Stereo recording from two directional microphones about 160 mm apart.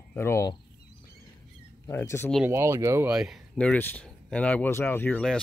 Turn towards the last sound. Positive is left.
turn(degrees=5)  # may be behind; listen again after turning